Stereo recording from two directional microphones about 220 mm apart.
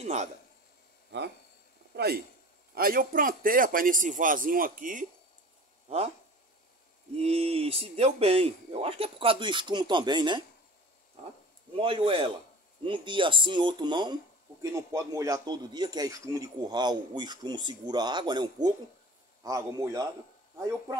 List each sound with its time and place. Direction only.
0.0 s a man's voice: 30° right (ahead or behind)
2.0 s a man's voice: 45° right (ahead or behind); by 6.1 s 30° right (ahead or behind)
7.2 s speech: 30° right (ahead or behind)
11.8 s a man's voice: 25° right (ahead or behind)